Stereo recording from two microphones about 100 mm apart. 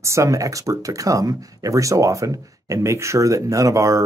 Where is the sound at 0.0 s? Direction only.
30° right (ahead or behind).